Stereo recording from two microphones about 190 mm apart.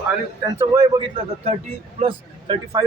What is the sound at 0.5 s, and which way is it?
Speech, 15° right (ahead or behind).